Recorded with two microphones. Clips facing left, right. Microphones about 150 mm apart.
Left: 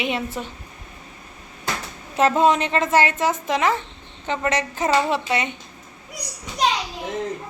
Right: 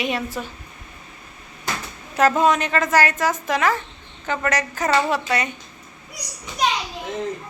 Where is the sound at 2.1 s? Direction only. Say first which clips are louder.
Even; 25° left (ahead or behind).